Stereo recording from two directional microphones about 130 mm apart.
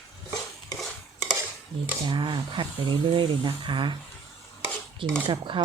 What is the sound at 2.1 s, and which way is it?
Speech, 35° right (ahead or behind).